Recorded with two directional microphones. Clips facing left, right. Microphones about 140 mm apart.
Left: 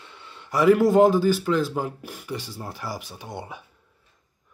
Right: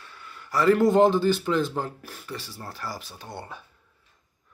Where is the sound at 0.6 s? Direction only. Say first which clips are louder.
Left 2 dB; 5° left (ahead or behind).